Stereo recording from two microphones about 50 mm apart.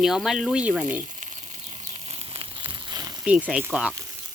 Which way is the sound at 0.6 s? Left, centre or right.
Right.